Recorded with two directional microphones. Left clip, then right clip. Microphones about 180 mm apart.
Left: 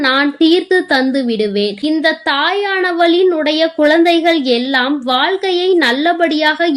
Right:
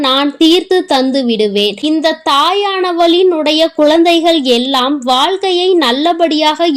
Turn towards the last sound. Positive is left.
turn(degrees=-30)  # may be behind; listen again after turning